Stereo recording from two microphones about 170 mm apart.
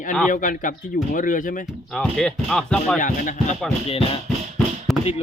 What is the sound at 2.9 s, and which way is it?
Speech, 50° left (ahead or behind).